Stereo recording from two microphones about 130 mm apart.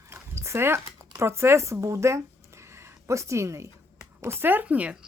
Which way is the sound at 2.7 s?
25° right (ahead or behind).